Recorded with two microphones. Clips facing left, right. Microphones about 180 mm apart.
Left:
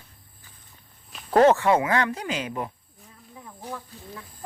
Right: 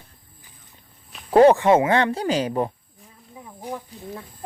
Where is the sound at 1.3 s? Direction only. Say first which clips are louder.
Right 4 dB; 15° right (ahead or behind); by 2.7 s 35° right (ahead or behind).